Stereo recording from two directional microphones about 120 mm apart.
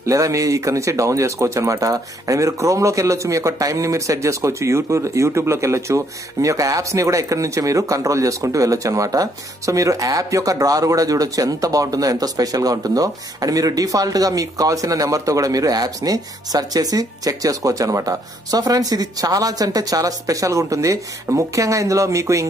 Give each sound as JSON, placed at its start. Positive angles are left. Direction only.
{"t": 0.0, "sound": "speech", "side_deg": -25}